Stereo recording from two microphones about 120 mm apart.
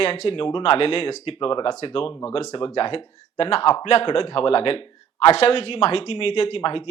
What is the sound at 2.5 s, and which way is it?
Speech, 50° left (ahead or behind).